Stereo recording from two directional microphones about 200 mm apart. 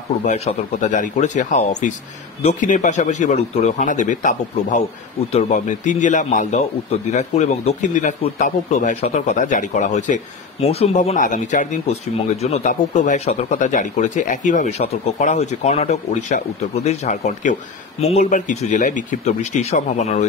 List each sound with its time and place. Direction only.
0.2 s speech: 35° left (ahead or behind)